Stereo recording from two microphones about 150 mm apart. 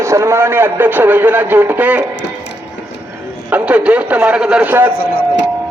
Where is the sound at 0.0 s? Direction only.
20° right (ahead or behind).